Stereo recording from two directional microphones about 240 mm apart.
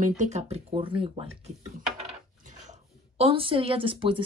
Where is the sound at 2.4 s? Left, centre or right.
Right.